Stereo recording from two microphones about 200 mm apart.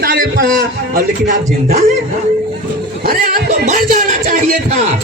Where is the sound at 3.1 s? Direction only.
50° right (ahead or behind).